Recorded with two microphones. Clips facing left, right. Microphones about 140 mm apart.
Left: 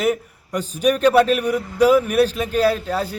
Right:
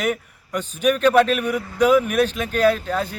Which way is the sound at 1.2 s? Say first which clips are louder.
Left 3 dB; 35° left (ahead or behind).